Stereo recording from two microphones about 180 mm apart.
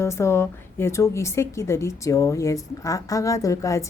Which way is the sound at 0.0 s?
15° left (ahead or behind).